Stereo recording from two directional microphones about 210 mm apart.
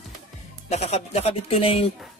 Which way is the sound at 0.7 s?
30° left (ahead or behind).